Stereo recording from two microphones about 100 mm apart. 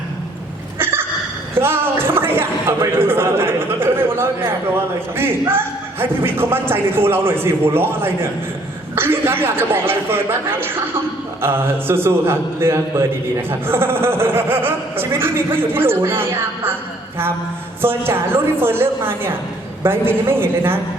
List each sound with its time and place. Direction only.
0.8 s a sound: 20° right (ahead or behind)
5.1 s a man's voice: 25° right (ahead or behind)
17.8 s a man's voice: 25° right (ahead or behind)